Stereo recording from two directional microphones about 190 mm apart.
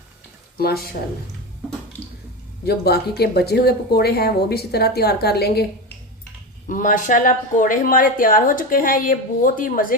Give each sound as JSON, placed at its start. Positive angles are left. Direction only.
{"t": 0.5, "sound": "a woman's voice", "side_deg": 55}
{"t": 2.6, "sound": "speech", "side_deg": 55}
{"t": 6.7, "sound": "a woman's voice", "side_deg": 45}